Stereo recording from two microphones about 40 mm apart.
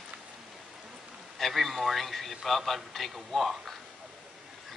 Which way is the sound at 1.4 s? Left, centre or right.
Centre.